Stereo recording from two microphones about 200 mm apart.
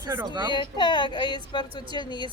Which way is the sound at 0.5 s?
25° left (ahead or behind).